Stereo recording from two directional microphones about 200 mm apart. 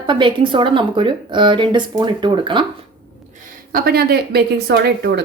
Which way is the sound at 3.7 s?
50° right (ahead or behind).